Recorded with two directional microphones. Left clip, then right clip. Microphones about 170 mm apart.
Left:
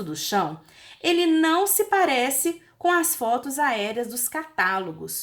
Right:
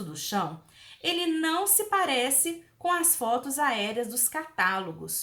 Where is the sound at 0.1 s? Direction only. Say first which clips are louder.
Left 6 dB; 30° left (ahead or behind).